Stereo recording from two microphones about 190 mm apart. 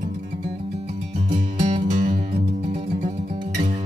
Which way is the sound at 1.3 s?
40° right (ahead or behind).